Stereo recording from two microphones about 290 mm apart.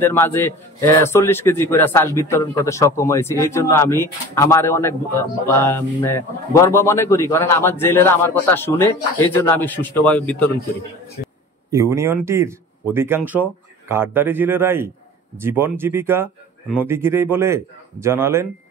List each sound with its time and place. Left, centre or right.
0.0 s a man's voice: centre
11.7 s speech: centre